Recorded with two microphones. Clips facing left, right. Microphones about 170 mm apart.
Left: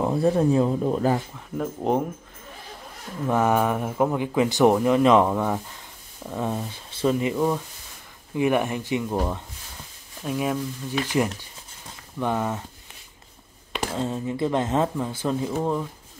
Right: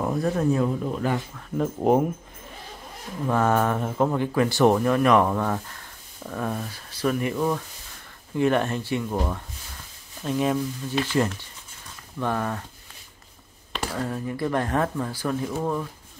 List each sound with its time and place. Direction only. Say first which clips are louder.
0.0 s speech: left 3 dB; 30° left (ahead or behind)
1.6 s speech: right 3 dB; 5° right (ahead or behind)
3.3 s speech: left 1 dB; 15° left (ahead or behind)
11.1 s speech: even; 15° left (ahead or behind)
13.9 s speech: left 2 dB; 25° left (ahead or behind)